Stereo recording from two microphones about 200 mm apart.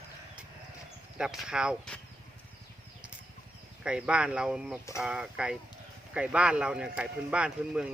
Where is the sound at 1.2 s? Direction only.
5° right (ahead or behind).